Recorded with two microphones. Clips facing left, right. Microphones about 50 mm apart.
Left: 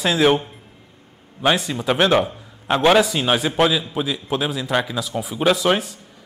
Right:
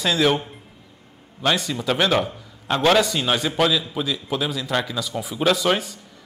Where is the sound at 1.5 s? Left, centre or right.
Centre.